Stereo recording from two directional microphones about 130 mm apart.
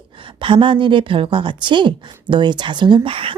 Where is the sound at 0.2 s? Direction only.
40° right (ahead or behind).